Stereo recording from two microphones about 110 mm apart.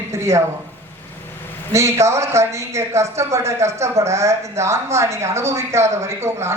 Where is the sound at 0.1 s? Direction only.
25° right (ahead or behind).